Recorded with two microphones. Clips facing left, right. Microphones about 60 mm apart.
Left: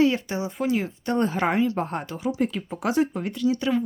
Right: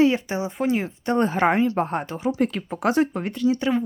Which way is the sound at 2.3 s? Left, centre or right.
Right.